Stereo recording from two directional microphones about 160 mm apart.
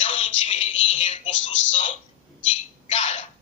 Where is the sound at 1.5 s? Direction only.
40° left (ahead or behind).